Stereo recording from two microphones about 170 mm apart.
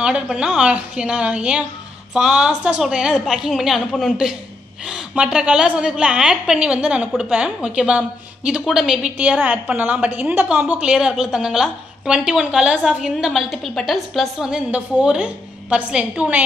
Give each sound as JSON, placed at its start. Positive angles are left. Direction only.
{"t": 0.0, "sound": "a woman's voice", "side_deg": -5}